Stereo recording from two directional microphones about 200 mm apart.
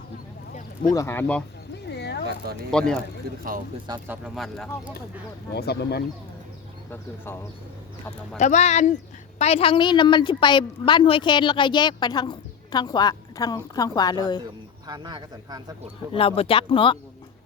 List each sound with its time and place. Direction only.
0.9 s speech: 10° left (ahead or behind)
1.7 s a sound: 55° left (ahead or behind)
2.7 s speech: 5° left (ahead or behind)
4.0 s speech: 10° right (ahead or behind)
4.4 s speech: centre (ahead or behind)
5.5 s speech: 55° left (ahead or behind)
6.9 s speech: 10° left (ahead or behind)
8.4 s a woman's voice: 35° left (ahead or behind); by 14.4 s 20° left (ahead or behind)
14.8 s speech: 20° right (ahead or behind)
16.0 s a woman's voice: 30° left (ahead or behind)